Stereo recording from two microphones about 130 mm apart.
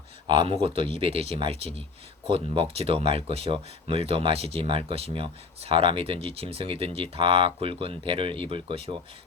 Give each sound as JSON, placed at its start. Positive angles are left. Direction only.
{"t": 0.3, "sound": "speech", "side_deg": -45}